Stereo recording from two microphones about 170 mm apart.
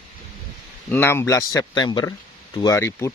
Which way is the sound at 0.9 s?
15° left (ahead or behind).